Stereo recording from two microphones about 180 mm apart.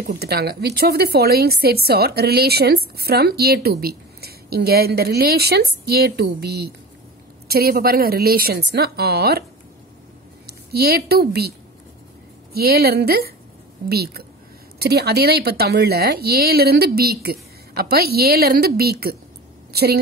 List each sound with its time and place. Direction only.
0.0 s a woman's voice: 60° right (ahead or behind)
10.4 s a woman's voice: 60° right (ahead or behind)
12.5 s a woman's voice: 60° right (ahead or behind)